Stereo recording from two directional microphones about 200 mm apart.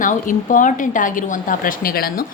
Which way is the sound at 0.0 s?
40° left (ahead or behind).